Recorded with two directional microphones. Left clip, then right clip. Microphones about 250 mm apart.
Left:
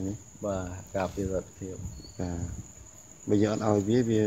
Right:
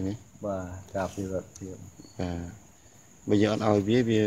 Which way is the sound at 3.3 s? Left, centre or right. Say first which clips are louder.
Right 2 dB; centre.